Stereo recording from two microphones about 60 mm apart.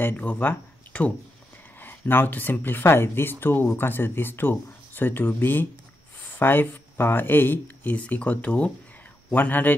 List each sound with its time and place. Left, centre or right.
0.0 s speech: left